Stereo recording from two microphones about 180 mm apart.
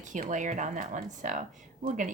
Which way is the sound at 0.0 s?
45° right (ahead or behind).